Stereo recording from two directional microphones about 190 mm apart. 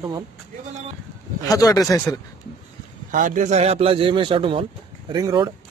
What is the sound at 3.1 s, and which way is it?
Speech, 45° right (ahead or behind).